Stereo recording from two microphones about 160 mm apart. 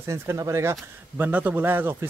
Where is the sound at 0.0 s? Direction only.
15° right (ahead or behind).